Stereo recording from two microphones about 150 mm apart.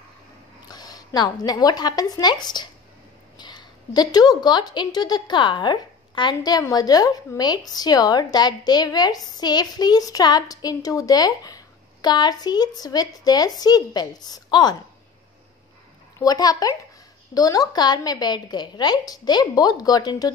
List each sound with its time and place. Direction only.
0.7 s a woman's voice: 25° left (ahead or behind)
16.2 s a woman's voice: 25° left (ahead or behind)